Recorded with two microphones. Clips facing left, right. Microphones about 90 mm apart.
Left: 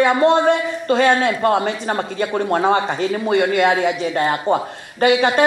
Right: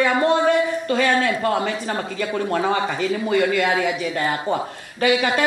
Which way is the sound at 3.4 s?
30° left (ahead or behind).